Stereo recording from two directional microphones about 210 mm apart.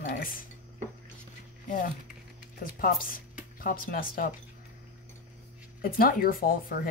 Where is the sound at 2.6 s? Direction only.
45° left (ahead or behind).